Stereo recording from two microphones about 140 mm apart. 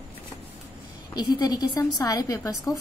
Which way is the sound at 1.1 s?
25° left (ahead or behind).